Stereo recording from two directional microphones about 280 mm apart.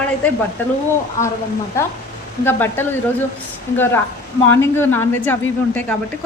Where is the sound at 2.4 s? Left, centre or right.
Centre.